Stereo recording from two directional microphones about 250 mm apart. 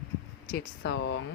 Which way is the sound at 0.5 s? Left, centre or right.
Left.